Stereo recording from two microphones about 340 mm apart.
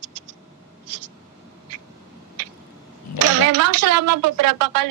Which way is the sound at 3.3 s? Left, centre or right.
Right.